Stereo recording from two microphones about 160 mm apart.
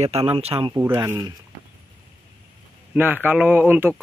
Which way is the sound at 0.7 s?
15° right (ahead or behind).